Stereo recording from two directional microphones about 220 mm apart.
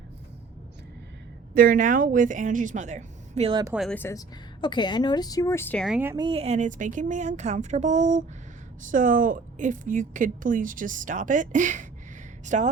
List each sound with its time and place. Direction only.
1.5 s a woman's voice: 40° right (ahead or behind)
3.6 s speech: 5° right (ahead or behind)
4.6 s speech: 20° left (ahead or behind); by 6.1 s 5° right (ahead or behind)
6.1 s a woman's voice: 25° right (ahead or behind)